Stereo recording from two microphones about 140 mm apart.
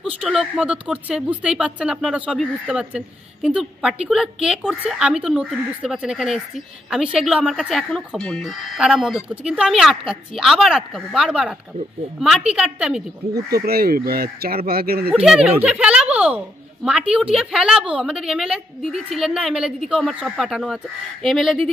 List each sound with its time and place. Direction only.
0.0 s speech: 5° right (ahead or behind)
13.5 s speech: 90° right
15.0 s speech: 5° right (ahead or behind)